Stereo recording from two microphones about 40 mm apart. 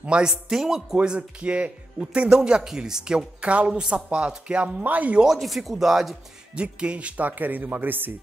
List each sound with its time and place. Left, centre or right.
0.0 s speech: right
1.0 s speech: right
2.2 s a woman's voice: centre
4.8 s speech: right
5.4 s speech: centre
6.5 s speech: right